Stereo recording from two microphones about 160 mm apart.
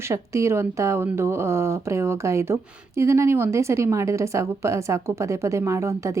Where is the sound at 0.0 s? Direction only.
15° right (ahead or behind).